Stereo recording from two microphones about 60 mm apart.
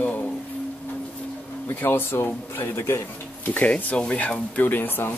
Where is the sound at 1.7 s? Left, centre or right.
Left.